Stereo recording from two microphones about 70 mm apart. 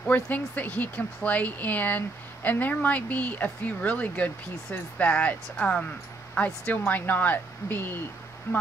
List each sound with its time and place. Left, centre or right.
0.0 s speech: left